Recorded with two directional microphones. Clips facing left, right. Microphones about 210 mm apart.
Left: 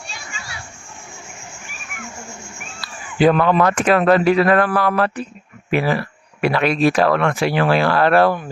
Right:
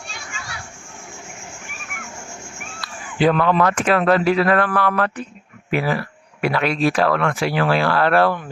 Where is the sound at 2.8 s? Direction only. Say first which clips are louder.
Left 3 dB; 15° left (ahead or behind).